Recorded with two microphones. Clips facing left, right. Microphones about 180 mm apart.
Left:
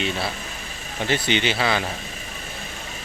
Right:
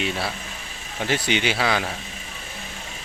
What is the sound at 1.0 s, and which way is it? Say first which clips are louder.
Speech: left 1 dB; 10° right (ahead or behind).